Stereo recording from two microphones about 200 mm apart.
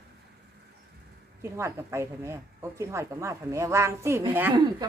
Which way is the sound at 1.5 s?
15° right (ahead or behind).